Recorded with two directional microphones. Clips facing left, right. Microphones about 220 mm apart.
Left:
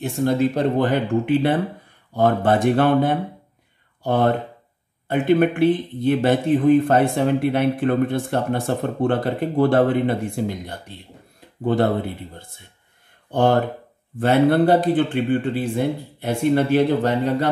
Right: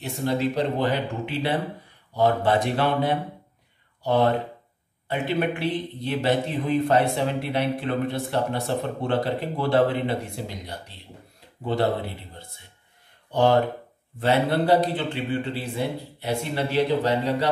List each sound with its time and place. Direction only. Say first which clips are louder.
0.0 s speech: left 5 dB; 50° left (ahead or behind)